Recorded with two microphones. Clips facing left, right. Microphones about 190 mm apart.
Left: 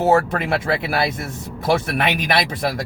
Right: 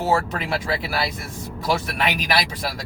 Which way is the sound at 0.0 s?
55° left (ahead or behind).